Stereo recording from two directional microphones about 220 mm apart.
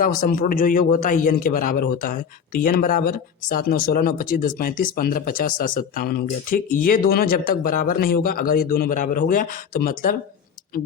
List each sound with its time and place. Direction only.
0.0 s a man's voice: 40° left (ahead or behind)